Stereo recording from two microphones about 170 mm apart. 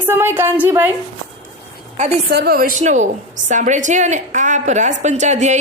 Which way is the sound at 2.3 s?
65° right (ahead or behind).